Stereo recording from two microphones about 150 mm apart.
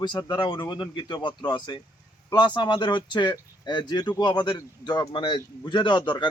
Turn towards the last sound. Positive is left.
turn(degrees=30)  # may be behind; listen again after turning